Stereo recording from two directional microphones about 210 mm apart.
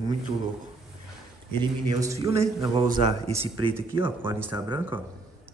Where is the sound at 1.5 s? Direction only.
15° right (ahead or behind).